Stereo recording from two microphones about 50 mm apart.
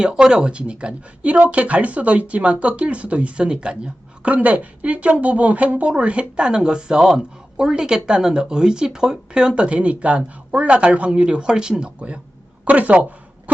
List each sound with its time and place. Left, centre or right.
0.0 s speech: centre
4.2 s speech: right; by 9.6 s centre
9.6 s speech: right